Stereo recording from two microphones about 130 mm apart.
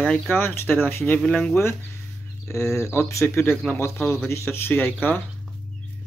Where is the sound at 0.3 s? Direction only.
15° left (ahead or behind).